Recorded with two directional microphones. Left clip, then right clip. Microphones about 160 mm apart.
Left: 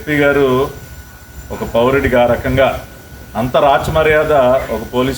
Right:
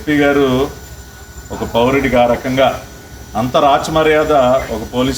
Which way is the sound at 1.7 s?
5° left (ahead or behind).